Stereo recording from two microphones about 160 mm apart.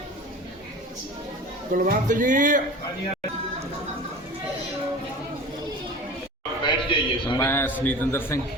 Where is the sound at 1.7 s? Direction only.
55° right (ahead or behind).